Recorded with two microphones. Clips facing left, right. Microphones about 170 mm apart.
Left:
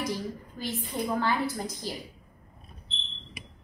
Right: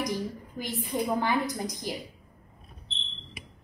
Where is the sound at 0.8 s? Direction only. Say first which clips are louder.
Right 1 dB; 15° right (ahead or behind).